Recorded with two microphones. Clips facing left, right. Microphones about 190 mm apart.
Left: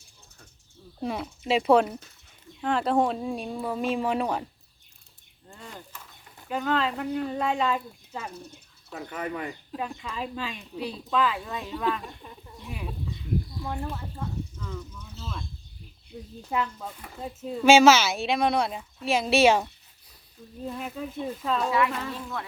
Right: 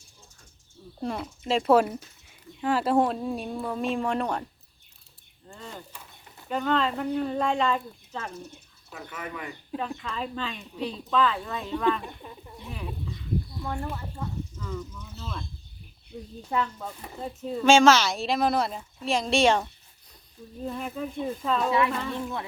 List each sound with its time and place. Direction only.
1.0 s speech: 5° left (ahead or behind)
5.5 s a sound: 5° left (ahead or behind)
6.5 s speech: 5° left (ahead or behind)
8.9 s speech: 35° left (ahead or behind)
9.7 s speech: 10° left (ahead or behind)
13.7 s speech: 5° left (ahead or behind)
20.7 s speech: centre (ahead or behind)
22.1 s speech: 20° right (ahead or behind)